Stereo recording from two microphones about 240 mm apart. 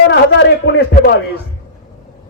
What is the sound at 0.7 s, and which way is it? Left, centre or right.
Speech, left.